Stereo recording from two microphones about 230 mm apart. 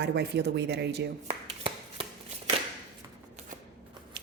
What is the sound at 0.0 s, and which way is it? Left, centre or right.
A woman's voice, right.